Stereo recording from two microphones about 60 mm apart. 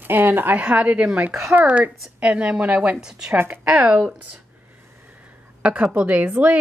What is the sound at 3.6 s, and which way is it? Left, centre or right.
Speech, centre.